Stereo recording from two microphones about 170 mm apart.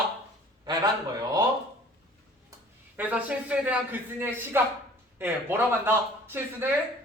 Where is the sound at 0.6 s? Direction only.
25° right (ahead or behind).